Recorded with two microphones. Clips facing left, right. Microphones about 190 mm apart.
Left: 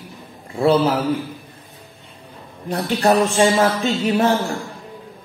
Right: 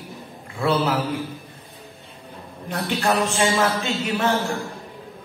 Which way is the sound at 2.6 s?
35° left (ahead or behind).